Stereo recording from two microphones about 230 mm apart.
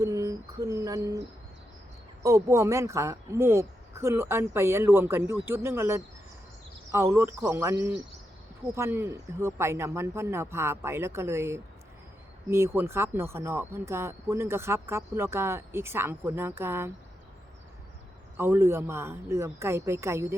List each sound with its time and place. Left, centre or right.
0.0 s speech: centre
2.2 s speech: centre
18.3 s speech: centre